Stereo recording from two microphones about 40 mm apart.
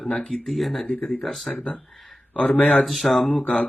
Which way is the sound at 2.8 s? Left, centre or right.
Centre.